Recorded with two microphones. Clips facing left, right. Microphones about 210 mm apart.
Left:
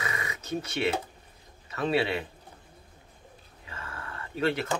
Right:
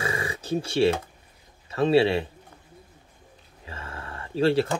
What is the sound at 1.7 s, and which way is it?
Speech, 30° right (ahead or behind).